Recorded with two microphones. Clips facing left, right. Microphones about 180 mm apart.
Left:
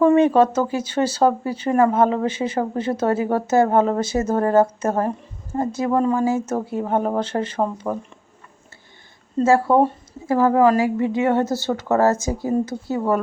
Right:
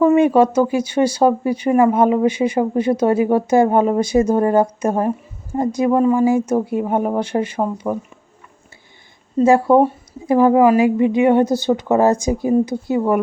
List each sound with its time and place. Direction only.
0.0 s speech: 10° right (ahead or behind)
9.4 s speech: 15° right (ahead or behind)